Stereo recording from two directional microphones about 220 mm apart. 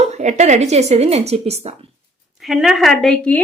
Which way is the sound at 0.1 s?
30° right (ahead or behind).